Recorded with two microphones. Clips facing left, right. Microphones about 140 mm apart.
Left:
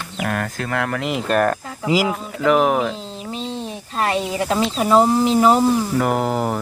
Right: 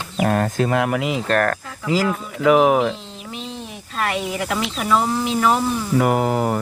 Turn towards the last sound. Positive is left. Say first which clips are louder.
# right 1 dB
turn(degrees=0)  # may be behind; listen again after turning